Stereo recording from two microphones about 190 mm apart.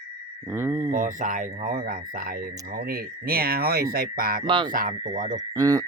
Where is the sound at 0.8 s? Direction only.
45° right (ahead or behind).